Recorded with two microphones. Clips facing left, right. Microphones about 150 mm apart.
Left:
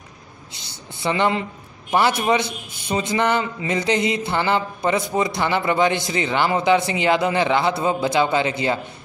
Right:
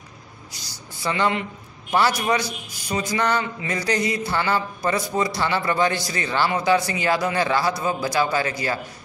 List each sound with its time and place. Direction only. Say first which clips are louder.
0.5 s a man's voice: left 2 dB; 25° left (ahead or behind)